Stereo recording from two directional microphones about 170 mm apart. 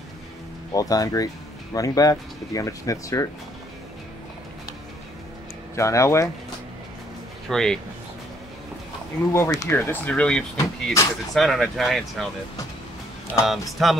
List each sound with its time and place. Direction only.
0.7 s speech: 20° left (ahead or behind)
5.8 s speech: 15° left (ahead or behind)
7.4 s speech: 5° left (ahead or behind)
9.3 s speech: 15° left (ahead or behind); by 12.3 s centre (ahead or behind)
13.5 s speech: centre (ahead or behind)